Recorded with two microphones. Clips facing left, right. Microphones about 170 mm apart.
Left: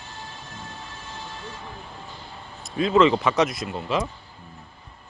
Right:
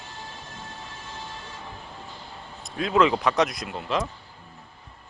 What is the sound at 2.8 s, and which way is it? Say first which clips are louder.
Speech: left 3 dB; centre (ahead or behind).